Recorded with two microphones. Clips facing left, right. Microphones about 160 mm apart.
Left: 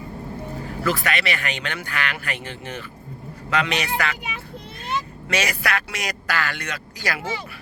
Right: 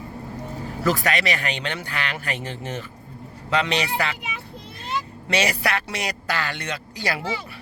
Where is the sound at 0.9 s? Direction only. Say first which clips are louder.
Right 2 dB; 40° right (ahead or behind).